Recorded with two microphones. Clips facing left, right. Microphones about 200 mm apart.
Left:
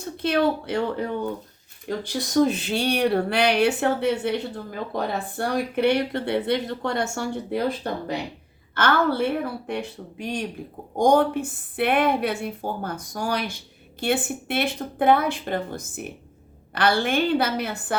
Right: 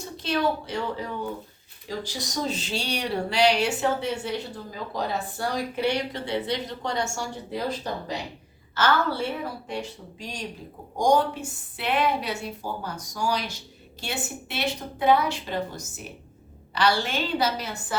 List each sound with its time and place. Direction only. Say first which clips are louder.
0.0 s a woman's voice: left 4 dB; 55° left (ahead or behind)